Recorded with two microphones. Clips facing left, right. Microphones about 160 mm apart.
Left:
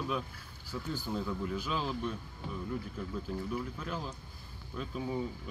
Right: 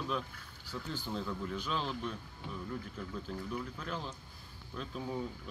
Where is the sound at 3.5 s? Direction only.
5° left (ahead or behind).